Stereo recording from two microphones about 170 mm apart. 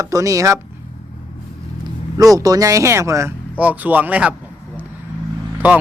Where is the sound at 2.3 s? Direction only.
20° right (ahead or behind).